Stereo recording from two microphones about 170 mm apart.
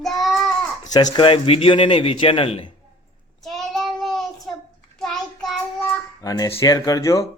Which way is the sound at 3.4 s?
Centre (ahead or behind).